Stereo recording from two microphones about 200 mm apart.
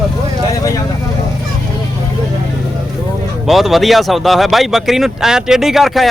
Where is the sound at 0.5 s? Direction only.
15° left (ahead or behind).